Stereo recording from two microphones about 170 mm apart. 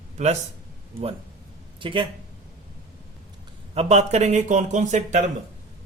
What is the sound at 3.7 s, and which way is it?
A man's voice, 40° right (ahead or behind).